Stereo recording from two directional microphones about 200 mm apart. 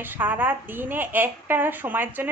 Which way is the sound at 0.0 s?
10° right (ahead or behind).